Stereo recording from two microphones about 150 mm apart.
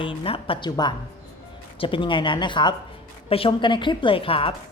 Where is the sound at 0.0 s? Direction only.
35° left (ahead or behind).